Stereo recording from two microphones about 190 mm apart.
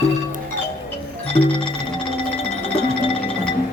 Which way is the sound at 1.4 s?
30° left (ahead or behind).